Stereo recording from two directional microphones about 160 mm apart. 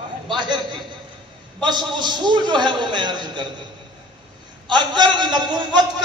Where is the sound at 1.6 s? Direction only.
30° right (ahead or behind).